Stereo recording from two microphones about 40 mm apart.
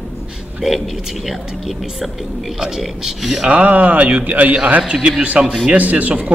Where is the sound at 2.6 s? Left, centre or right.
Centre.